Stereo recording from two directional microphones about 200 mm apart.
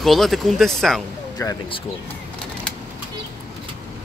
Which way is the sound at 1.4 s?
15° left (ahead or behind).